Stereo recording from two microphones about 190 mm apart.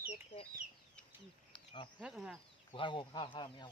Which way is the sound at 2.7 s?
25° left (ahead or behind).